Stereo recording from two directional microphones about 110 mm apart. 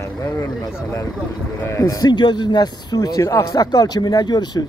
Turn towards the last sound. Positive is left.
turn(degrees=40)  # may be behind; listen again after turning